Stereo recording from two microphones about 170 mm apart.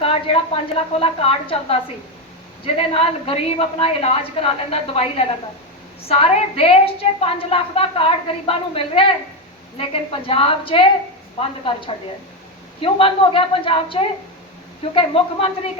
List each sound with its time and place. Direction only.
0.0 s a woman's voice: 35° left (ahead or behind)